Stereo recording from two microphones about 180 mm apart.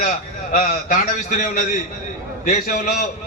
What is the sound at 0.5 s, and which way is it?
A man's voice, 50° left (ahead or behind).